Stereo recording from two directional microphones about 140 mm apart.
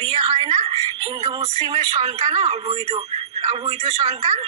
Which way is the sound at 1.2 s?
50° right (ahead or behind).